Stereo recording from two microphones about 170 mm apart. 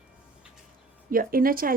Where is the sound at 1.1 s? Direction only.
55° right (ahead or behind).